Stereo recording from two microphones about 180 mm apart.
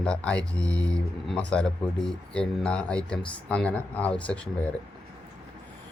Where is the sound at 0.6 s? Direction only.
20° right (ahead or behind).